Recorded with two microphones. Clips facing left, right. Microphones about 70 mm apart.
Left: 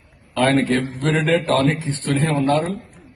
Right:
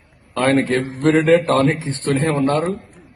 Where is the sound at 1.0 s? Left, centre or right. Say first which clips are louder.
Right 6 dB; right.